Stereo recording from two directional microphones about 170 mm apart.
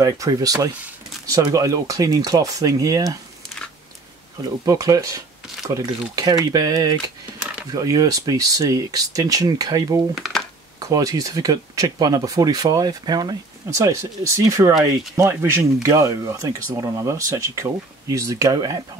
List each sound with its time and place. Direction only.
0.0 s speech: 20° right (ahead or behind)
4.4 s speech: 20° right (ahead or behind)